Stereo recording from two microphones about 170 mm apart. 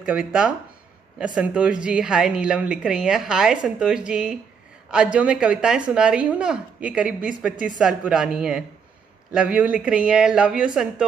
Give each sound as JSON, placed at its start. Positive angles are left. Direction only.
{"t": 0.0, "sound": "a woman's voice", "side_deg": -5}